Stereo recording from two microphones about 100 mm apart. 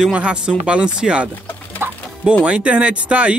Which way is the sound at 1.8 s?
20° right (ahead or behind).